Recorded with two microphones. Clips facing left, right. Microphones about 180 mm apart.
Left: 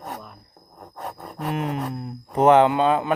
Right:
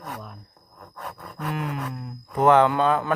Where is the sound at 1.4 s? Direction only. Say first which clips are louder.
Left 3 dB; 25° left (ahead or behind).